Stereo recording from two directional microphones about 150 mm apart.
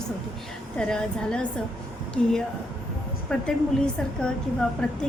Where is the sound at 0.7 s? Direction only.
5° left (ahead or behind).